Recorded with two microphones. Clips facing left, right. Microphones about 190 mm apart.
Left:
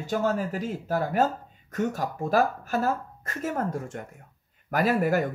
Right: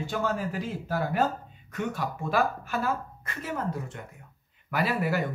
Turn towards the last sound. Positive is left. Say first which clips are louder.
# left 4 dB
turn(degrees=45)  # may be behind; listen again after turning